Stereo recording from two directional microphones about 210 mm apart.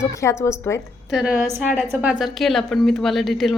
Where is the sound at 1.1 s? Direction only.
5° right (ahead or behind).